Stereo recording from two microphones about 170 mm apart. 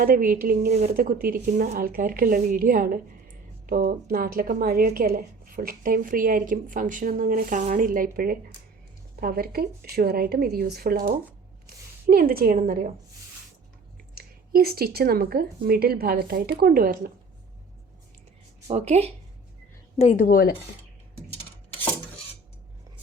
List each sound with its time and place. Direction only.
0.0 s a woman's voice: 55° right (ahead or behind)
14.2 s a woman's voice: 65° right (ahead or behind)
18.7 s speech: 40° right (ahead or behind)
20.0 s a woman's voice: 45° left (ahead or behind)
20.2 s speech: 60° left (ahead or behind)